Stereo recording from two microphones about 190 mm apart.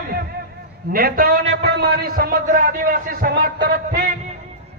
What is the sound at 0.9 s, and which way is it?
A man's voice, 50° right (ahead or behind).